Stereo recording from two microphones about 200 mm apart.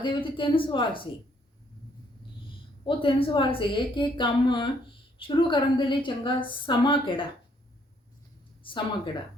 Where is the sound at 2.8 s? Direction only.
25° left (ahead or behind).